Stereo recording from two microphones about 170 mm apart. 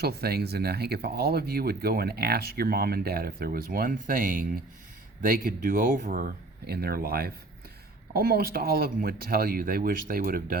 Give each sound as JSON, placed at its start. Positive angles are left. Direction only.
{"t": 0.0, "sound": "speech", "side_deg": -70}